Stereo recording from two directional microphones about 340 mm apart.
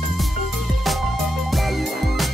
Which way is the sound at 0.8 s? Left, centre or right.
Centre.